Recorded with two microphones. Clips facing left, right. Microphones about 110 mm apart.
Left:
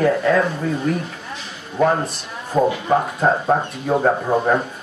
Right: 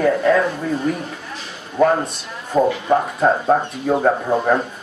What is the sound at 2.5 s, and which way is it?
Speech, centre (ahead or behind).